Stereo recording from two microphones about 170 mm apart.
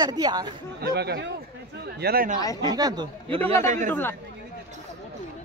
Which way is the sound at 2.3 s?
20° left (ahead or behind).